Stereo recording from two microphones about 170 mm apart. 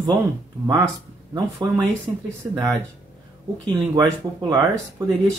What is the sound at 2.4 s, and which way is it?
Speech, 20° right (ahead or behind).